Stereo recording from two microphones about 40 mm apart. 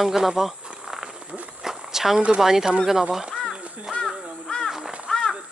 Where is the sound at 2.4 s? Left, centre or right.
Centre.